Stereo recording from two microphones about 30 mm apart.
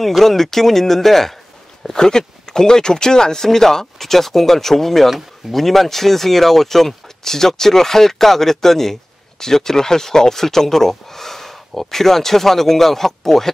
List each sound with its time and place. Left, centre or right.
0.0 s speech: centre
1.9 s speech: left